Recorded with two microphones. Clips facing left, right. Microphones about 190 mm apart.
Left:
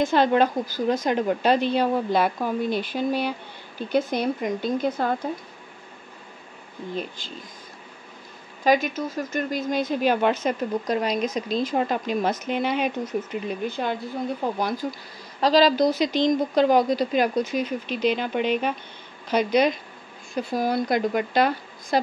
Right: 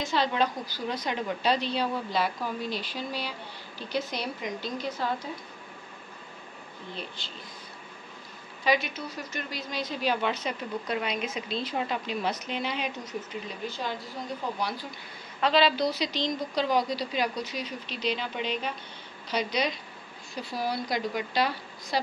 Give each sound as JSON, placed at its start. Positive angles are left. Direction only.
{"t": 0.0, "sound": "a woman's voice", "side_deg": 55}
{"t": 7.2, "sound": "a woman's voice", "side_deg": 50}
{"t": 8.6, "sound": "a woman's voice", "side_deg": 45}
{"t": 14.6, "sound": "a woman's voice", "side_deg": 45}